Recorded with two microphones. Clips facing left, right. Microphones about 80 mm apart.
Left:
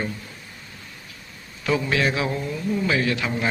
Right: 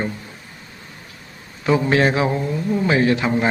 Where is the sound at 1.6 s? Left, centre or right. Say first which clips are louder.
Right 6 dB; right.